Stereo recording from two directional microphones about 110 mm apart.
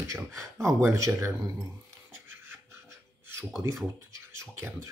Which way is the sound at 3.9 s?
25° right (ahead or behind).